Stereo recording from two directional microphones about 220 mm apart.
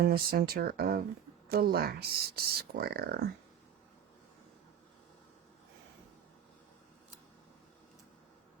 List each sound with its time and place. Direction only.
0.0 s speech: 45° right (ahead or behind)